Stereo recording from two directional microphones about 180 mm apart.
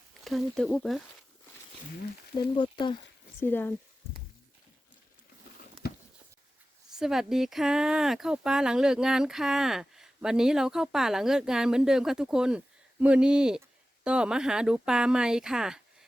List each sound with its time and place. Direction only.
0.3 s speech: centre (ahead or behind)
2.3 s speech: 25° left (ahead or behind)
3.4 s speech: 10° left (ahead or behind)
5.8 s a sound: 55° left (ahead or behind)
6.9 s speech: 5° right (ahead or behind)